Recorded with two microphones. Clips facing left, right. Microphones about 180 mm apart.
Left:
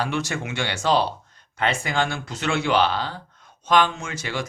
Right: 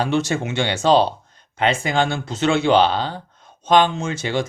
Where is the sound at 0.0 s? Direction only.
25° right (ahead or behind).